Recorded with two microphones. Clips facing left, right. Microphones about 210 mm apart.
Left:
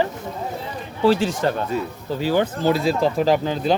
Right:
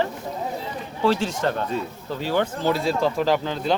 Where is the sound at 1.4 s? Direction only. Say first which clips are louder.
Left 2 dB; 5° left (ahead or behind).